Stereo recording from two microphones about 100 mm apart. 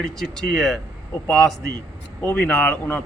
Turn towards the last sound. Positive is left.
turn(degrees=15)  # may be behind; listen again after turning